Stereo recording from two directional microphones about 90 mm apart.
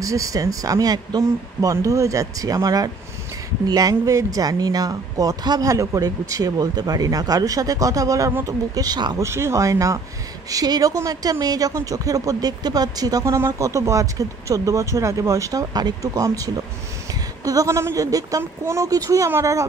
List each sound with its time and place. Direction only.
0.0 s speech: 35° right (ahead or behind)
1.2 s a woman's voice: 35° right (ahead or behind)
9.2 s a woman's voice: 30° right (ahead or behind)